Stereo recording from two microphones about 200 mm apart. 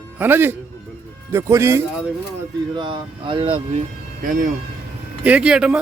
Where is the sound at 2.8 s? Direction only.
25° right (ahead or behind).